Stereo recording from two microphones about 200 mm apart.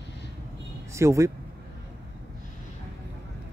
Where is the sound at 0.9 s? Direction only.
15° right (ahead or behind).